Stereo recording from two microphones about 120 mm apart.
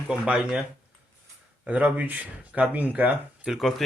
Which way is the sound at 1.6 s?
10° right (ahead or behind).